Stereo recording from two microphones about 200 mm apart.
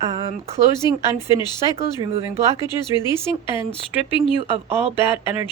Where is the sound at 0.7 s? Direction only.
20° left (ahead or behind).